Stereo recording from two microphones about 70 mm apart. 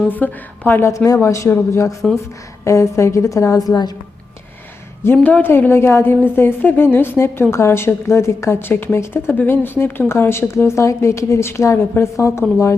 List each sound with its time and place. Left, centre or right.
0.1 s a woman's voice: left
0.8 s speech: left
5.1 s a woman's voice: left
5.4 s speech: left